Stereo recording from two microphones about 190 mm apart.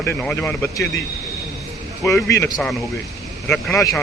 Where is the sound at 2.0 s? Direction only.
15° left (ahead or behind).